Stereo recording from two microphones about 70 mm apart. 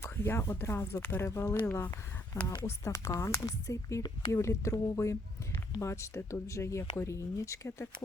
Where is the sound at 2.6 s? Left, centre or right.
Left.